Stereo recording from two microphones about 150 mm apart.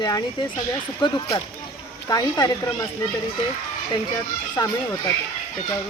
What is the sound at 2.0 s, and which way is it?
Speech, 25° left (ahead or behind).